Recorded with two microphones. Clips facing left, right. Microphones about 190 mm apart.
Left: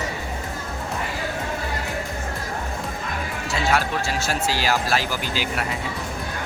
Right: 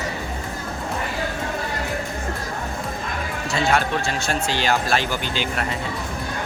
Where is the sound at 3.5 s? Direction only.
5° left (ahead or behind).